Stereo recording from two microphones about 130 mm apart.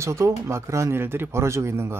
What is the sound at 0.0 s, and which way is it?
Speech, 20° right (ahead or behind).